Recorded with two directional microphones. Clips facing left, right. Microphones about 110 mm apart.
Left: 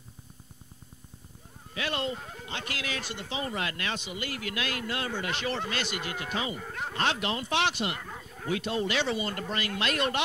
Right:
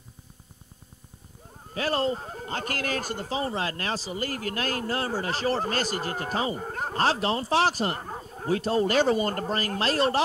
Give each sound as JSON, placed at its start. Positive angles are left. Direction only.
{"t": 1.7, "sound": "speech", "side_deg": -40}